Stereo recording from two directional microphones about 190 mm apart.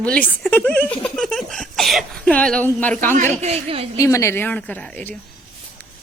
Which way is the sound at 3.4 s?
35° right (ahead or behind).